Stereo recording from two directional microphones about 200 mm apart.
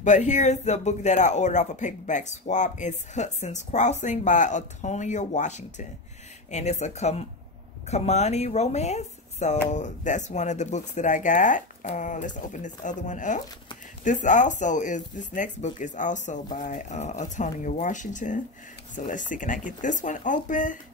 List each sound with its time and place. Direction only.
0.0 s speech: 35° left (ahead or behind)